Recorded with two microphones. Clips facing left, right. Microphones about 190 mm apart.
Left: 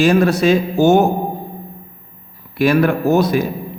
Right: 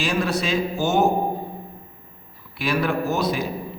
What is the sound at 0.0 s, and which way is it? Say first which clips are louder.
A man's voice: left 10 dB; 45° left (ahead or behind).